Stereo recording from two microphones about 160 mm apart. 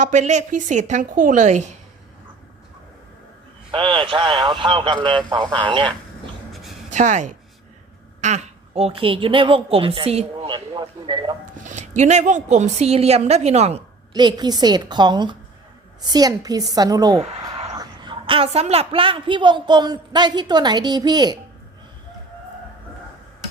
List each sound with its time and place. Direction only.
0.0 s speech: 50° right (ahead or behind)
3.7 s a woman's voice: 30° right (ahead or behind)
6.5 s a sound: centre (ahead or behind)
6.9 s a woman's voice: 50° right (ahead or behind); by 11.3 s 30° right (ahead or behind)
11.5 s speech: 50° right (ahead or behind)
14.1 s a woman's voice: 25° right (ahead or behind)